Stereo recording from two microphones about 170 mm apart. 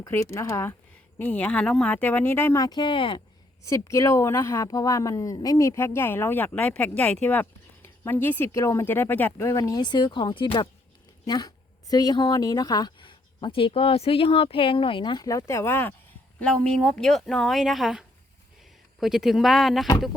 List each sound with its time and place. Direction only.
0.0 s speech: 20° left (ahead or behind)
3.6 s a woman's voice: 15° left (ahead or behind); by 19.9 s centre (ahead or behind)